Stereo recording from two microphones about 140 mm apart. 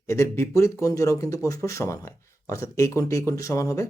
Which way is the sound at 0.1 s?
20° left (ahead or behind).